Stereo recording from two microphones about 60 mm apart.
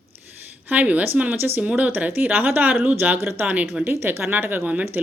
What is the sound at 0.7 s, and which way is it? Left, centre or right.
A woman's voice, right.